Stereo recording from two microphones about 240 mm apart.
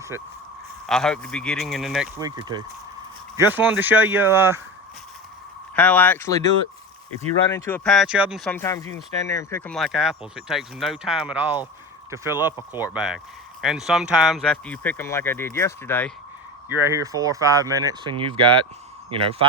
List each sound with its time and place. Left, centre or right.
0.9 s speech: centre
2.1 s speech: centre
5.7 s speech: centre
7.5 s speech: centre
8.5 s speech: centre
16.6 s speech: centre